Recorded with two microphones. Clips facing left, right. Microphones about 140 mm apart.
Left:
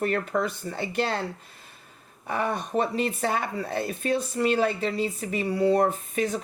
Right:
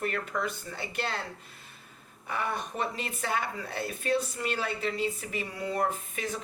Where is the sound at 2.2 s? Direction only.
35° left (ahead or behind).